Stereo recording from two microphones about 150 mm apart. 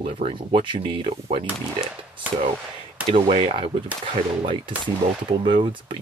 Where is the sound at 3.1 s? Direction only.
40° right (ahead or behind).